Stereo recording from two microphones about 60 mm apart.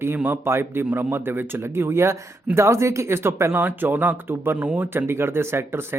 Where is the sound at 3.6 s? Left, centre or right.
Right.